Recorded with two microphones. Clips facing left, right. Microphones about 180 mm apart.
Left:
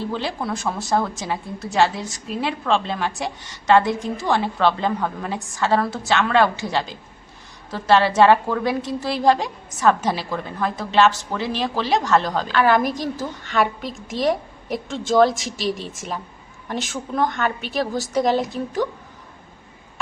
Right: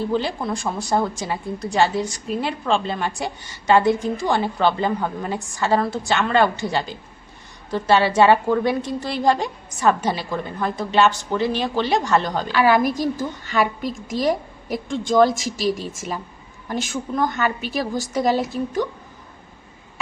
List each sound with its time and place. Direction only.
0.0 s a woman's voice: centre (ahead or behind)